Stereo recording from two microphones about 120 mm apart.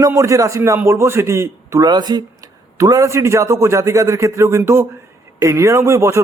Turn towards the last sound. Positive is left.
turn(degrees=-25)  # may be behind; listen again after turning